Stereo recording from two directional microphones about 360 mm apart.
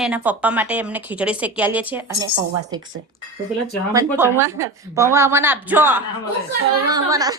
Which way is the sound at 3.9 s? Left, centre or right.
Centre.